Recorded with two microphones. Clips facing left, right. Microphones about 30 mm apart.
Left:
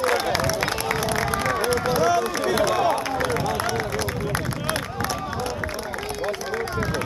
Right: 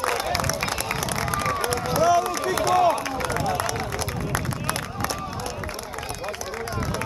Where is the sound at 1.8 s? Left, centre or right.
Left.